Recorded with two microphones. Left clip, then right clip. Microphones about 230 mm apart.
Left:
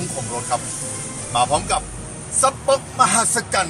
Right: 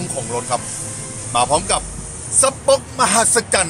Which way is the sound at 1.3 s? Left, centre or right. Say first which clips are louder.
Right 2 dB; right.